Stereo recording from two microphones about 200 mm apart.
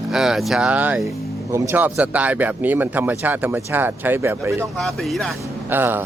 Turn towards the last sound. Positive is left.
turn(degrees=-10)  # may be behind; listen again after turning